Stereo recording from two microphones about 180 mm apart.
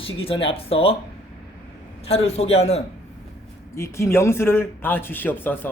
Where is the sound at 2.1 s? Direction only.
35° left (ahead or behind).